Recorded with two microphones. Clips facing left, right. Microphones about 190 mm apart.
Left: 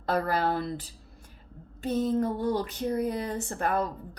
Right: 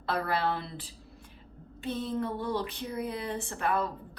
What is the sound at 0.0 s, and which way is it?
A woman's voice, 40° left (ahead or behind).